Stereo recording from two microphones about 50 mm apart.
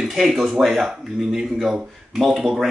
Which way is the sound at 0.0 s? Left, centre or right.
Centre.